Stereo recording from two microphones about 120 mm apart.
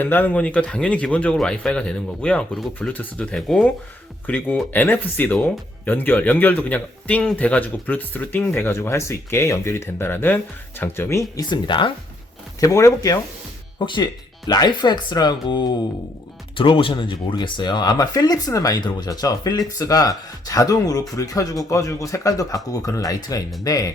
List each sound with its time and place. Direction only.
0.0 s speech: 15° left (ahead or behind)
4.3 s speech: 15° left (ahead or behind)
11.4 s speech: 40° left (ahead or behind)
12.5 s speech: 25° left (ahead or behind)
13.7 s speech: 40° left (ahead or behind)